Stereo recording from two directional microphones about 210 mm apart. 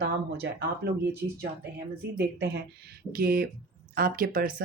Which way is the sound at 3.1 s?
45° right (ahead or behind).